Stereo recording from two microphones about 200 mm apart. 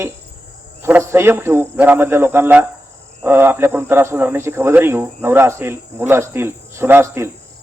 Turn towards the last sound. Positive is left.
turn(degrees=-15)  # may be behind; listen again after turning